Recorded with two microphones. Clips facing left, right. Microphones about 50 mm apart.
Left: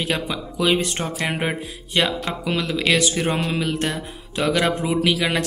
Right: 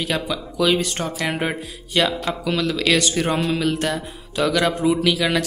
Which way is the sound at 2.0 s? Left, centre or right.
Left.